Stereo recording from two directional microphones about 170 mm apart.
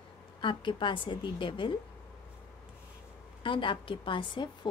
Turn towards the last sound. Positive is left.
turn(degrees=25)  # may be behind; listen again after turning